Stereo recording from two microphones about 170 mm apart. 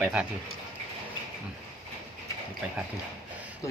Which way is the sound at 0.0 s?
5° right (ahead or behind).